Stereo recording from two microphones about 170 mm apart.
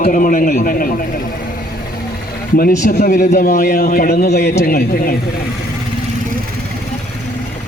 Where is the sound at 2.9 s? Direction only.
50° left (ahead or behind).